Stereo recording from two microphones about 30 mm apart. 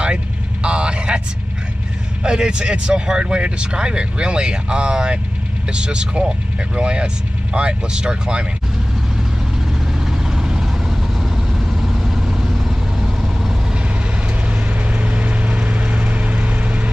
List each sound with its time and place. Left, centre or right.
0.0 s vehicle: right
2.2 s speech: right
9.9 s vehicle: centre
11.7 s vehicle: centre
14.9 s vehicle: right